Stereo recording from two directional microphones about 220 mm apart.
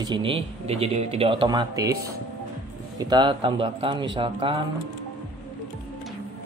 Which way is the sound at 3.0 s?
20° right (ahead or behind).